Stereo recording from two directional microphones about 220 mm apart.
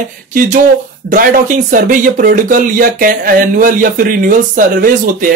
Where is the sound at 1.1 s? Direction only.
35° right (ahead or behind).